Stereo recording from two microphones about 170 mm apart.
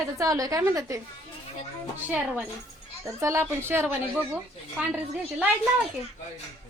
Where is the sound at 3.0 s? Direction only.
15° right (ahead or behind).